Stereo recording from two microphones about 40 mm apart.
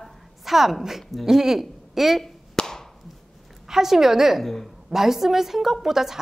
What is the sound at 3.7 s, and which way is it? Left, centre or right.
A woman's voice, centre.